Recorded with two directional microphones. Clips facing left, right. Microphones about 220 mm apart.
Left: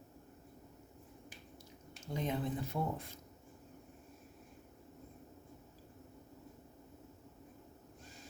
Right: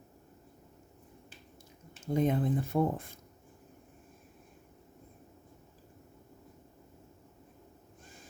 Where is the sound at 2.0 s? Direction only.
50° right (ahead or behind).